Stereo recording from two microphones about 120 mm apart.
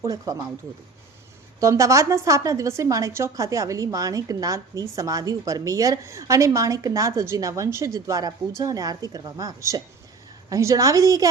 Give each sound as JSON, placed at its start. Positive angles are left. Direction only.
{"t": 0.0, "sound": "a woman's voice", "side_deg": -30}
{"t": 1.5, "sound": "a woman's voice", "side_deg": -25}